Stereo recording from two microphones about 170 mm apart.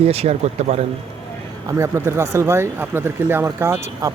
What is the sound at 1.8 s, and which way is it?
Speech, 15° right (ahead or behind).